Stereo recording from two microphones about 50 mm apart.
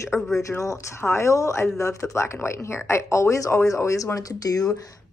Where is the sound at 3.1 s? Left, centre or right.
Left.